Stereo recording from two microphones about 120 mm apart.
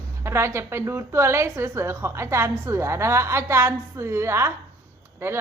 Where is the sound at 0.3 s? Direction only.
20° right (ahead or behind).